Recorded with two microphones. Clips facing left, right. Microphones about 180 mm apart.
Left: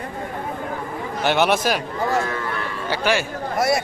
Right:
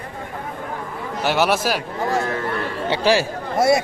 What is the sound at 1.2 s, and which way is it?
Speech, 5° right (ahead or behind).